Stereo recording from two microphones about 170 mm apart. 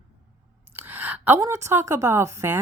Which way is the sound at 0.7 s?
10° right (ahead or behind).